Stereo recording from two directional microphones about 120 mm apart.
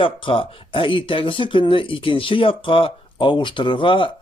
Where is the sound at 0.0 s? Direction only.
45° left (ahead or behind).